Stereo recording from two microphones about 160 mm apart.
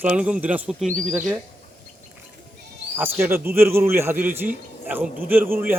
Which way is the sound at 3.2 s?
15° right (ahead or behind).